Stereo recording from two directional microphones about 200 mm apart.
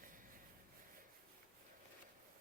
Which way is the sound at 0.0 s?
40° right (ahead or behind).